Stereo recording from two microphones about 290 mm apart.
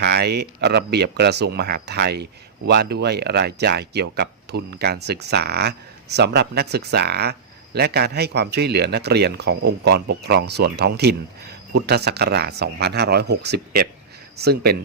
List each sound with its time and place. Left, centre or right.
0.0 s speech: right